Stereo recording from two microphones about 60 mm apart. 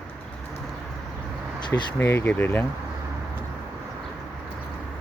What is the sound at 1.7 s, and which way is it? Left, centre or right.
Speech, left.